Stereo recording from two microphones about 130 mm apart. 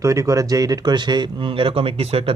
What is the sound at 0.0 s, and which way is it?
Speech, 25° right (ahead or behind).